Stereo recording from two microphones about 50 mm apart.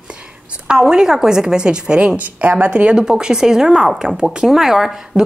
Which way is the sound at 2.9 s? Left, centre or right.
Centre.